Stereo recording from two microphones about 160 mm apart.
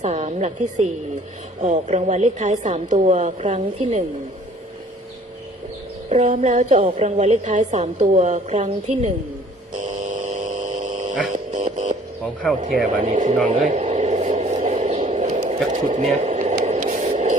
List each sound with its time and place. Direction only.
0.0 s a woman's voice: 45° right (ahead or behind)
6.1 s a woman's voice: 45° right (ahead or behind)
6.7 s a woman's voice: 40° right (ahead or behind)
9.8 s a sound: 50° right (ahead or behind)
11.3 s music: 45° right (ahead or behind)
12.2 s speech: 5° left (ahead or behind)
12.6 s a woman's voice: 50° right (ahead or behind)
13.5 s a sound: 45° right (ahead or behind)
16.6 s static: 50° right (ahead or behind)